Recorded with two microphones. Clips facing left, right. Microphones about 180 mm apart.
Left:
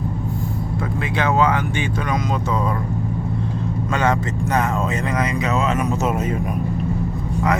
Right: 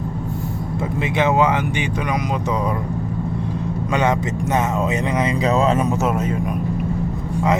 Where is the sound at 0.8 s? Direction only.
20° right (ahead or behind).